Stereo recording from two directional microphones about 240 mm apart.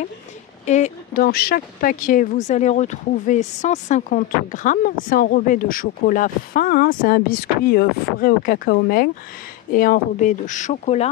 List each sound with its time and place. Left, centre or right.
0.7 s speech: left